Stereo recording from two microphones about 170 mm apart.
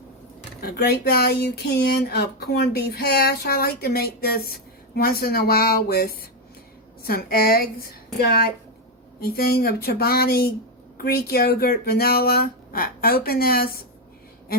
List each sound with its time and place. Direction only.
0.6 s speech: 65° left (ahead or behind)